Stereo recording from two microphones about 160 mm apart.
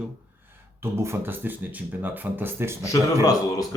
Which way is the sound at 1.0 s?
15° right (ahead or behind).